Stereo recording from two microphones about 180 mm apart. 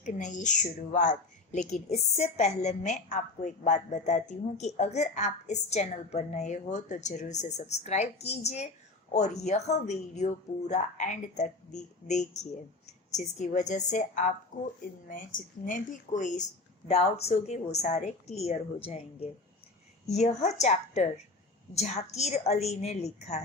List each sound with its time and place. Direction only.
0.0 s a woman's voice: 45° left (ahead or behind)